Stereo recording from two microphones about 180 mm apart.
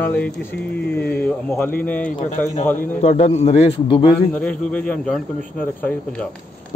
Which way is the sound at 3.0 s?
40° left (ahead or behind).